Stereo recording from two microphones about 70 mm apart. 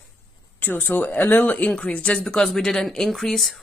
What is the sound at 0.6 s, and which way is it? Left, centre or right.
Speech, left.